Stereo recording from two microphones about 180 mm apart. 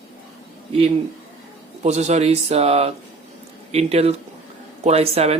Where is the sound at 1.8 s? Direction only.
40° right (ahead or behind).